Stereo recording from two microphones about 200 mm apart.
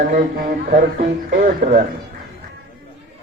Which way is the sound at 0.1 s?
45° right (ahead or behind).